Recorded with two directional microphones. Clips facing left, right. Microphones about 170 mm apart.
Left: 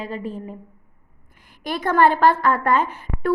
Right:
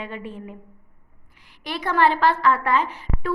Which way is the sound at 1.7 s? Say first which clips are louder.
Left 3 dB; 50° left (ahead or behind).